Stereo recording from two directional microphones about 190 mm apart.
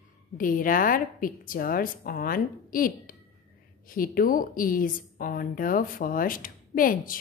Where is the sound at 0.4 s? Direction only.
45° left (ahead or behind).